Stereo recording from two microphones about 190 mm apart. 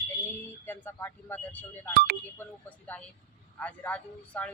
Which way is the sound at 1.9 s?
55° right (ahead or behind).